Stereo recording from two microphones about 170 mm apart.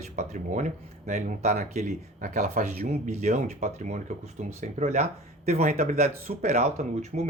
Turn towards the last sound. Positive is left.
turn(degrees=-40)  # may be behind; listen again after turning